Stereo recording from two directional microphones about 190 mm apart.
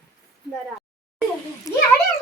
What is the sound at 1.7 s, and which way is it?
Speech, 15° left (ahead or behind).